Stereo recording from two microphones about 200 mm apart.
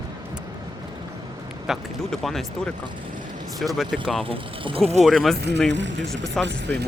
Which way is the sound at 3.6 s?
Centre (ahead or behind).